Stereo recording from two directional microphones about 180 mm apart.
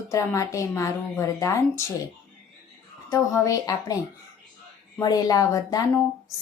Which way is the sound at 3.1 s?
20° left (ahead or behind).